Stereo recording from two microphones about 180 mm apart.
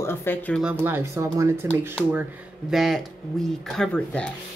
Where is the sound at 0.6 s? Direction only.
10° right (ahead or behind).